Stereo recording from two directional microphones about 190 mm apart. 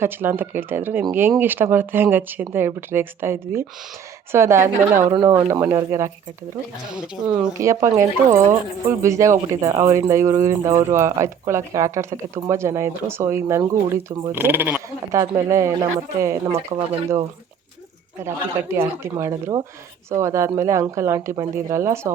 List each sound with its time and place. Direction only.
0.0 s speech: 10° right (ahead or behind)
6.9 s speech: 5° right (ahead or behind)
7.6 s speech: 15° right (ahead or behind)
18.2 s speech: 15° right (ahead or behind)